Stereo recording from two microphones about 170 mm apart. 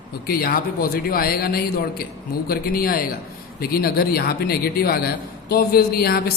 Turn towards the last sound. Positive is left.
turn(degrees=65)  # may be behind; listen again after turning